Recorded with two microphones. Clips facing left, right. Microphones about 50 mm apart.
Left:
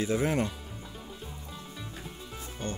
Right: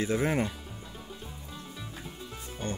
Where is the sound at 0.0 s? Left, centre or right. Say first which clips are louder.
Even; centre.